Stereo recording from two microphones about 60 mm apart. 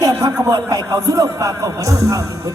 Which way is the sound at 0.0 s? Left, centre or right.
Right.